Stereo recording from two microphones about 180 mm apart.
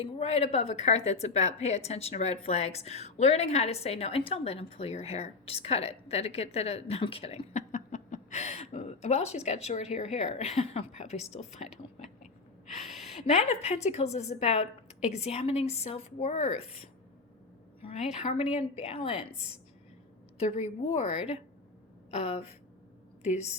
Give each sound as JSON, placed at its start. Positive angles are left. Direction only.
{"t": 0.0, "sound": "a woman's voice", "side_deg": 35}
{"t": 12.7, "sound": "a sound", "side_deg": 0}
{"t": 13.1, "sound": "a woman's voice", "side_deg": 35}
{"t": 18.1, "sound": "a woman's voice", "side_deg": 40}
{"t": 20.4, "sound": "a woman's voice", "side_deg": 35}
{"t": 22.1, "sound": "a woman's voice", "side_deg": 35}